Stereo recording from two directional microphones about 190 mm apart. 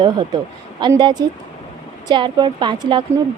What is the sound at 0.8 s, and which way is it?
A woman's voice, 25° right (ahead or behind).